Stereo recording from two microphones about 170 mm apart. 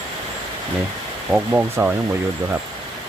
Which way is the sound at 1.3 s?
5° right (ahead or behind).